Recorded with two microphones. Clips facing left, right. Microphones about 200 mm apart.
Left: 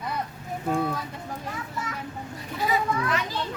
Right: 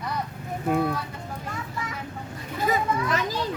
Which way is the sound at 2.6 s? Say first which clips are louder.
Right 1 dB; 45° right (ahead or behind).